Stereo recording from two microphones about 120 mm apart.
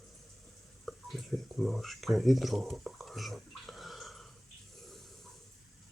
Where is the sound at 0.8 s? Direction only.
Centre (ahead or behind).